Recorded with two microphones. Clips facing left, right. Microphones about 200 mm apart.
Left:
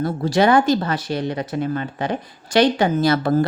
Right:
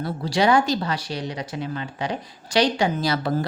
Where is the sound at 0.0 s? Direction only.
50° left (ahead or behind).